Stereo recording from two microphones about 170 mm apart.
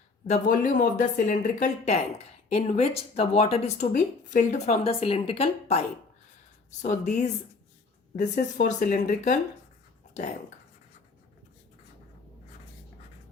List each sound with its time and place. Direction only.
0.3 s speech: 45° left (ahead or behind)
8.2 s speech: 70° left (ahead or behind)
8.6 s speech: 45° left (ahead or behind)